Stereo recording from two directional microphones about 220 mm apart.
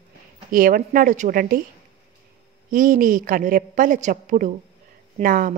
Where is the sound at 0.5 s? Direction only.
40° right (ahead or behind).